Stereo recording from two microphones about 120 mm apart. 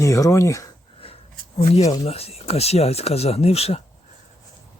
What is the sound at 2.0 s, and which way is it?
Speech, 55° left (ahead or behind).